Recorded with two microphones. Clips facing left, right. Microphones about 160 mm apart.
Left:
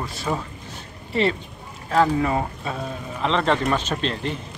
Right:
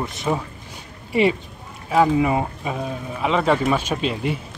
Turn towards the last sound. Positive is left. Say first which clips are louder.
# right 3 dB
turn(degrees=-10)  # may be behind; listen again after turning